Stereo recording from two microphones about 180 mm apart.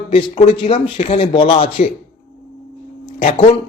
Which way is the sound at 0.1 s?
30° left (ahead or behind).